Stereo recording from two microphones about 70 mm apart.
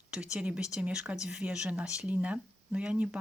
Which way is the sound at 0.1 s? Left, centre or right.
Centre.